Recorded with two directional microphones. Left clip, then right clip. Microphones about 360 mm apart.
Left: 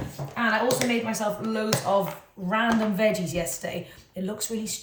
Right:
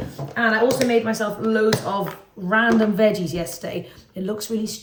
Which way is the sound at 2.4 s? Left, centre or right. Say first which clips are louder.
Right 6 dB; centre.